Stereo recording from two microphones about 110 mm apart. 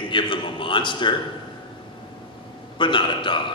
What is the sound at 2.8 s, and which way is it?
Speech, 45° left (ahead or behind).